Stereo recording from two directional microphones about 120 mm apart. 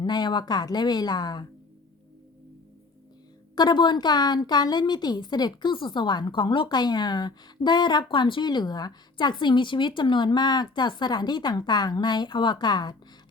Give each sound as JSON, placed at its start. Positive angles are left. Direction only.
{"t": 0.0, "sound": "speech", "side_deg": 35}
{"t": 3.5, "sound": "speech", "side_deg": 35}